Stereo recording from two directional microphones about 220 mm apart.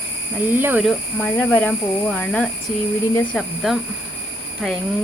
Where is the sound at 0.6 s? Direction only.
10° right (ahead or behind).